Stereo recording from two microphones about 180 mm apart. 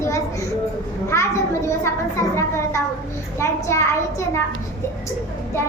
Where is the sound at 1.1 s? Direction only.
15° left (ahead or behind).